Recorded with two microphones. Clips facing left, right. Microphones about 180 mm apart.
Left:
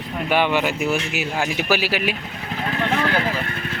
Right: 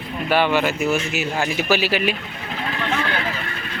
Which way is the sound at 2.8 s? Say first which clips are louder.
Left 3 dB; 35° left (ahead or behind).